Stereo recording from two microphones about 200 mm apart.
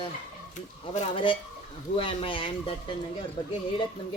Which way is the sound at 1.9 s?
25° left (ahead or behind).